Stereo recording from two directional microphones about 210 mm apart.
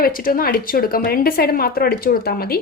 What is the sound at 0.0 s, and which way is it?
Speech, 45° left (ahead or behind).